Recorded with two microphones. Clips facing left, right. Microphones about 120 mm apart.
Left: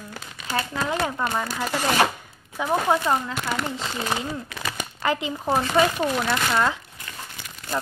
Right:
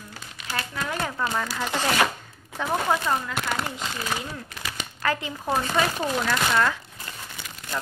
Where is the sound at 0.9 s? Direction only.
20° left (ahead or behind).